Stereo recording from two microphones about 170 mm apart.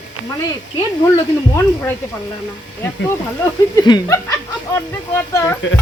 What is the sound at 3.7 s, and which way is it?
A man's voice, 20° left (ahead or behind).